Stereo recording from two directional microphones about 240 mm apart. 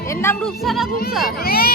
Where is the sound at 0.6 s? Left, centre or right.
Centre.